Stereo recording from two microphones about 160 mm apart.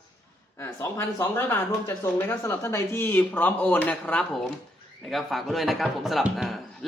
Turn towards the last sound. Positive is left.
turn(degrees=0)  # may be behind; listen again after turning